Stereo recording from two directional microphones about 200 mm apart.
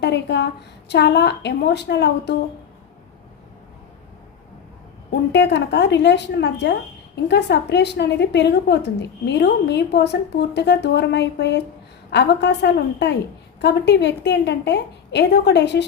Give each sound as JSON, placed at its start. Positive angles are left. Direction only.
{"t": 0.0, "sound": "a woman's voice", "side_deg": 60}
{"t": 5.3, "sound": "a woman's voice", "side_deg": 60}